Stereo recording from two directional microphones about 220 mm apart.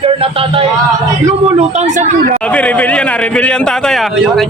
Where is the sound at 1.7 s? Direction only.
35° right (ahead or behind).